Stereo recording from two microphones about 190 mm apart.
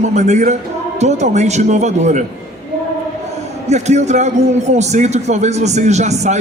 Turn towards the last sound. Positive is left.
turn(degrees=-35)  # may be behind; listen again after turning